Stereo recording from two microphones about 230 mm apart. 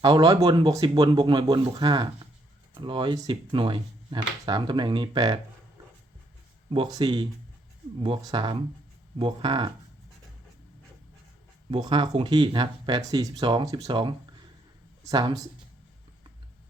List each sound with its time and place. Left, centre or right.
0.0 s speech: centre
6.7 s speech: centre
11.7 s speech: centre